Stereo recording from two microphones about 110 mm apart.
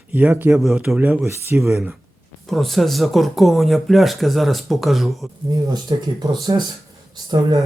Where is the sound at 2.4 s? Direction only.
Centre (ahead or behind).